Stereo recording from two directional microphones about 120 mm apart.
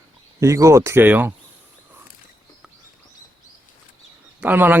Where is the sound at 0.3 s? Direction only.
25° right (ahead or behind).